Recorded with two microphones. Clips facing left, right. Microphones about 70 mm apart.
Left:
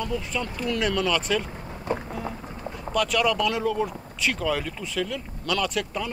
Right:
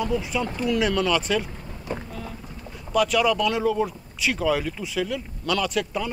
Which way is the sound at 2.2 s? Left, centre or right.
Left.